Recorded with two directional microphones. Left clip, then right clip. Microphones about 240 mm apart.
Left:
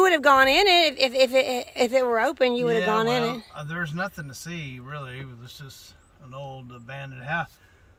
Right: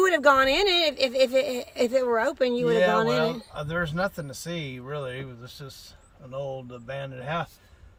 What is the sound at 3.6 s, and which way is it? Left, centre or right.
Speech, right.